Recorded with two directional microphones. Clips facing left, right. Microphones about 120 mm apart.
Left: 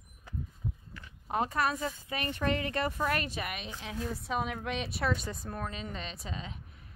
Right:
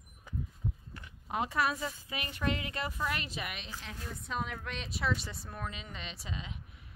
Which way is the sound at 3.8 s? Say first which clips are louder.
Left 7 dB; 15° left (ahead or behind).